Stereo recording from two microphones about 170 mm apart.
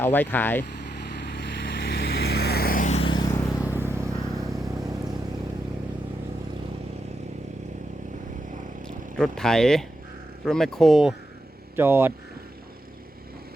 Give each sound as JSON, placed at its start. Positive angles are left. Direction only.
{"t": 0.0, "sound": "speech", "side_deg": 10}
{"t": 1.1, "sound": "vehicle", "side_deg": 85}
{"t": 3.0, "sound": "vehicle", "side_deg": 25}
{"t": 3.6, "sound": "vehicle", "side_deg": -10}
{"t": 9.1, "sound": "speech", "side_deg": 0}
{"t": 11.8, "sound": "speech", "side_deg": -15}